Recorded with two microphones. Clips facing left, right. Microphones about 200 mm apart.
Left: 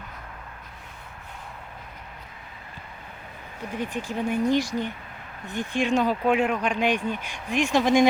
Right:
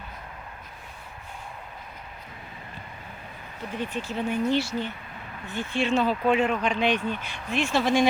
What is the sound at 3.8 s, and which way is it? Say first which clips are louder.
Speech: left 1 dB; 15° left (ahead or behind).